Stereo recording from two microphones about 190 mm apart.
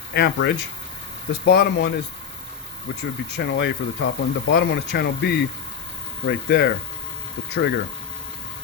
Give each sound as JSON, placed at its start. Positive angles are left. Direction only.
{"t": 0.1, "sound": "speech", "side_deg": 60}
{"t": 3.0, "sound": "speech", "side_deg": 60}